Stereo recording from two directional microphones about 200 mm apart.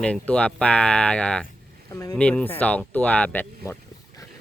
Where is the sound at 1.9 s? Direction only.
15° left (ahead or behind).